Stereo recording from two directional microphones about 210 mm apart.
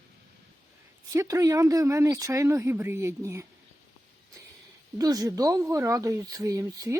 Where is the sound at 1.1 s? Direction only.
15° right (ahead or behind).